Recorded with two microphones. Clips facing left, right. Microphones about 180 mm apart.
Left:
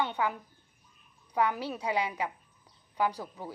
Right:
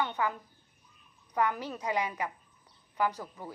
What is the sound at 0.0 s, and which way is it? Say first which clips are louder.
A woman's voice: left 1 dB; 15° left (ahead or behind).